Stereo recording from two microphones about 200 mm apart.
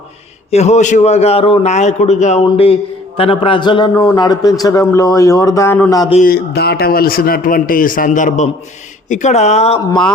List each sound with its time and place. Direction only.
0.5 s a man's voice: 35° left (ahead or behind); by 6.1 s 15° left (ahead or behind)
6.2 s a man's voice: 50° left (ahead or behind); by 9.8 s 30° left (ahead or behind)